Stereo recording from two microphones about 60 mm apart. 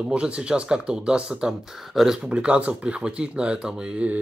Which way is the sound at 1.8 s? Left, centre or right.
Centre.